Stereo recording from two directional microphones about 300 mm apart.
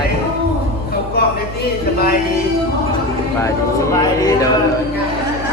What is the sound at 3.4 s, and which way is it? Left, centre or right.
Speech, centre.